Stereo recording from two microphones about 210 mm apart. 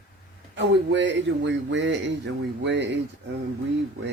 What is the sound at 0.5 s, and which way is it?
Speech, 55° right (ahead or behind).